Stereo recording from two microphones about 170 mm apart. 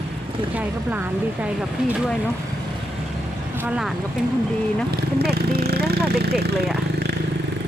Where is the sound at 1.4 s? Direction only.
5° right (ahead or behind).